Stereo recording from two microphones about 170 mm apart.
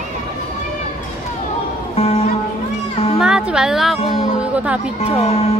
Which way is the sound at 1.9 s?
35° left (ahead or behind).